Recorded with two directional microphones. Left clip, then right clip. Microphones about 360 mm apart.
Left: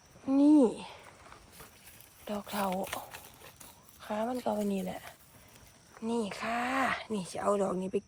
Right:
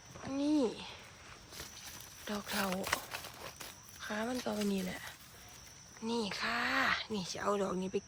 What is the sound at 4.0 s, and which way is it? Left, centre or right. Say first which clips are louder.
Speech: left 4 dB; centre.